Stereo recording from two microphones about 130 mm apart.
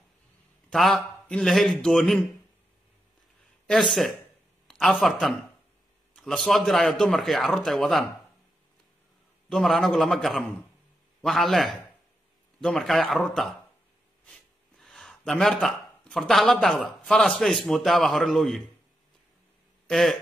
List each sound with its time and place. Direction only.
0.7 s a man's voice: centre (ahead or behind)
3.6 s a man's voice: centre (ahead or behind)
9.5 s a man's voice: centre (ahead or behind)
19.9 s a man's voice: centre (ahead or behind)